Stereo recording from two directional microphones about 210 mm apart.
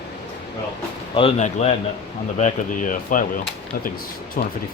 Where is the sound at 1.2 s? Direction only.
30° left (ahead or behind).